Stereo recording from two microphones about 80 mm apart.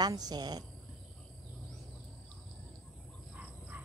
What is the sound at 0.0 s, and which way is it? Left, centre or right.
Speech, right.